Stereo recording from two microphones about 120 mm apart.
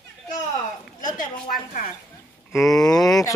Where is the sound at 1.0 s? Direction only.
35° left (ahead or behind).